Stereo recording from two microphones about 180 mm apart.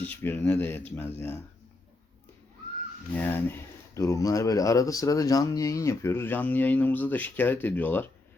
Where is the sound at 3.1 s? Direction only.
10° left (ahead or behind).